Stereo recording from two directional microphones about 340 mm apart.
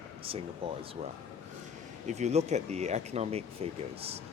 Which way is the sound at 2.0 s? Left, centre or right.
Centre.